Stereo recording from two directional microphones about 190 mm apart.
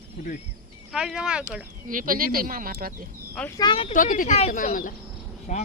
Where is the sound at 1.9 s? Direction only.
45° right (ahead or behind).